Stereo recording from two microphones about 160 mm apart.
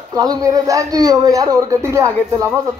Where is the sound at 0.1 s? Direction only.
25° right (ahead or behind).